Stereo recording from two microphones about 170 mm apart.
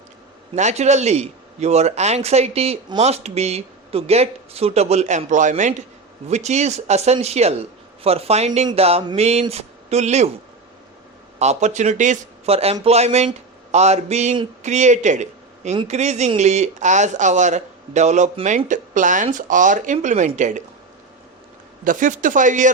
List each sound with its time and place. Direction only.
0.5 s a man's voice: 40° right (ahead or behind)
11.3 s a man's voice: 40° right (ahead or behind)
21.8 s speech: 50° right (ahead or behind)